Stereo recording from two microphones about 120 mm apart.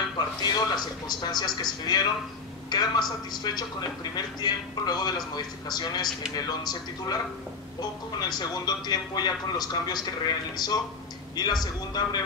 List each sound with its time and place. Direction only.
0.2 s music: 35° left (ahead or behind)
0.6 s a man's voice: 35° left (ahead or behind)